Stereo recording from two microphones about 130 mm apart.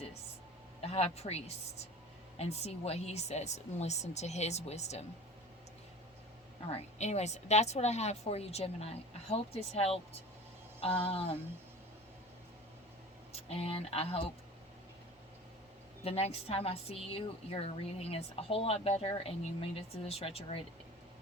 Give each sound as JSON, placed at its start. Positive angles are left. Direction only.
{"t": 0.8, "sound": "speech", "side_deg": 50}
{"t": 2.4, "sound": "speech", "side_deg": 55}
{"t": 6.7, "sound": "a woman's voice", "side_deg": 55}
{"t": 13.3, "sound": "speech", "side_deg": 50}
{"t": 16.0, "sound": "a woman's voice", "side_deg": 50}